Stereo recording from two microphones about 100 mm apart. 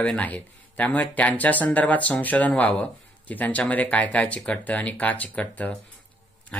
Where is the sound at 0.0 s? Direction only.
15° left (ahead or behind).